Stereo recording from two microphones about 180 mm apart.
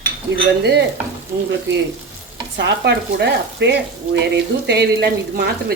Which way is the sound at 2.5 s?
70° right (ahead or behind).